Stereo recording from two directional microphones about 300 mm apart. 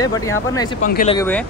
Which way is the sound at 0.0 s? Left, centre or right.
Centre.